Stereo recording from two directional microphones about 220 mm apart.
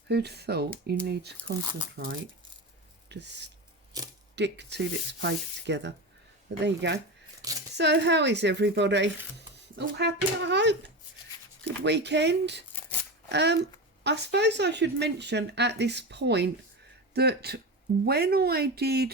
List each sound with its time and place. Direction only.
0.1 s speech: 50° right (ahead or behind)
3.1 s speech: 50° right (ahead or behind)
7.4 s speech: 15° right (ahead or behind)
7.8 s speech: 50° right (ahead or behind)
11.8 s speech: 50° right (ahead or behind)